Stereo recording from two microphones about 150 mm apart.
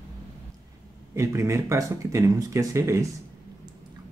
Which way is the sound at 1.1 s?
20° right (ahead or behind).